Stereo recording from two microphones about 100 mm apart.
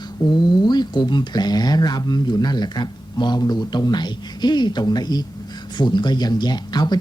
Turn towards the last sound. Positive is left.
turn(degrees=45)  # may be behind; listen again after turning